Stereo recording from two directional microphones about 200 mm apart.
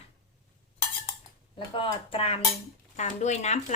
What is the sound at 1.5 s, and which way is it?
Speech, 25° left (ahead or behind).